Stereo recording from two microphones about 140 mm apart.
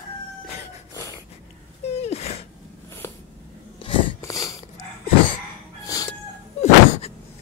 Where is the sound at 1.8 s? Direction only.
50° left (ahead or behind).